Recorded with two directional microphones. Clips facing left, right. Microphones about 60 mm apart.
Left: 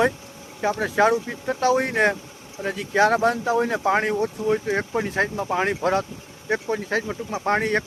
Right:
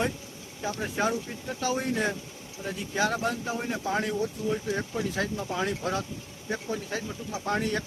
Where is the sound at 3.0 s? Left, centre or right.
Left.